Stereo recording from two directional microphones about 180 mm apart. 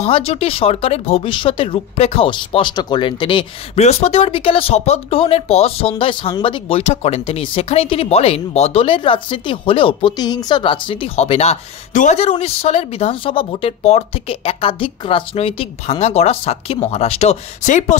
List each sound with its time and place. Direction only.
0.0 s speech: 35° left (ahead or behind)